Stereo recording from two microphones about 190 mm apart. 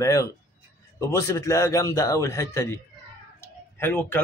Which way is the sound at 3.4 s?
10° left (ahead or behind).